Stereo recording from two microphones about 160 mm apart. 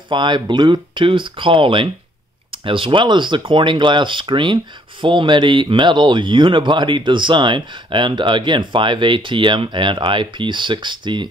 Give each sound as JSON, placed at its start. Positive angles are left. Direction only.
{"t": 0.1, "sound": "speech", "side_deg": -30}